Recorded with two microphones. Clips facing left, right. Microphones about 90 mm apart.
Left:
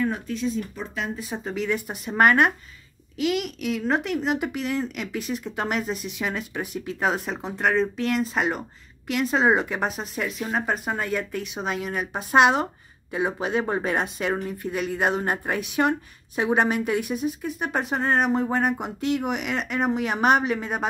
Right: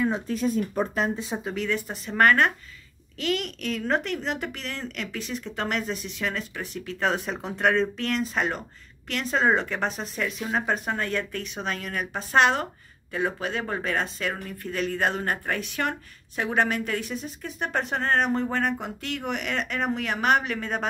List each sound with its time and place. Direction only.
0.3 s speech: 45° right (ahead or behind)
1.4 s speech: 5° left (ahead or behind)